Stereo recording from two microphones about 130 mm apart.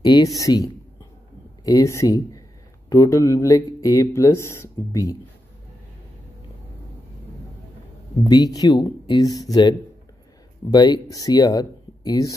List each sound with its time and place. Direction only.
0.0 s speech: 30° left (ahead or behind)
8.2 s speech: 30° left (ahead or behind)